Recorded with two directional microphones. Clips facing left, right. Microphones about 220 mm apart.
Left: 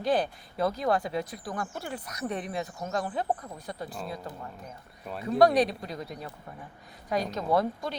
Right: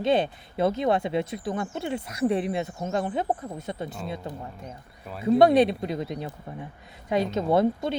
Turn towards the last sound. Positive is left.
turn(degrees=-25)  # may be behind; listen again after turning